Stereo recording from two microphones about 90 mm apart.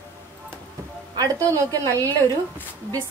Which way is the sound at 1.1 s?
40° right (ahead or behind).